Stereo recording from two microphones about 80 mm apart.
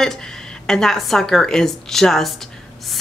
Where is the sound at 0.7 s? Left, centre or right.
Centre.